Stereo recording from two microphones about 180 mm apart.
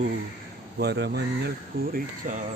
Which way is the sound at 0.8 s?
65° right (ahead or behind).